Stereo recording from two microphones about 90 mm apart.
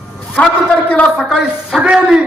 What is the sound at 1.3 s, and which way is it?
Speech, 5° right (ahead or behind).